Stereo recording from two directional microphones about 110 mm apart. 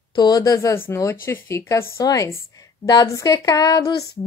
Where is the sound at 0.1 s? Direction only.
35° left (ahead or behind).